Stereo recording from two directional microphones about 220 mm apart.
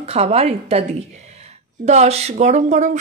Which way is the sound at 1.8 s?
30° right (ahead or behind).